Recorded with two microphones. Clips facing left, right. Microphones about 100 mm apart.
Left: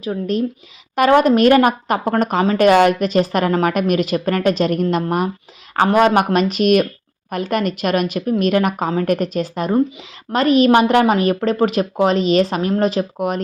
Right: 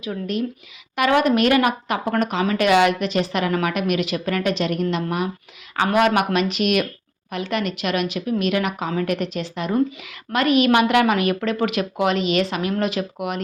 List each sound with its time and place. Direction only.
0.0 s a woman's voice: 35° left (ahead or behind)